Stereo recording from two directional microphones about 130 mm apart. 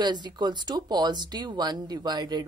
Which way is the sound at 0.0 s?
35° right (ahead or behind).